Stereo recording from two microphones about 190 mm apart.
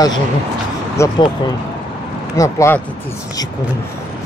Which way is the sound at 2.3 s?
15° left (ahead or behind).